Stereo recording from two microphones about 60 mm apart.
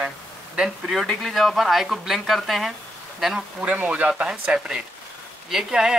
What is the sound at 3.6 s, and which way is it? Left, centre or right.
Speech, right.